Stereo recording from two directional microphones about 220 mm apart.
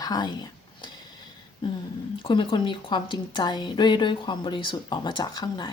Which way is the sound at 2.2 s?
20° left (ahead or behind).